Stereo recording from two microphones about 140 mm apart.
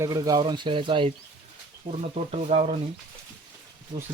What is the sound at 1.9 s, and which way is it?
Speech, 55° right (ahead or behind).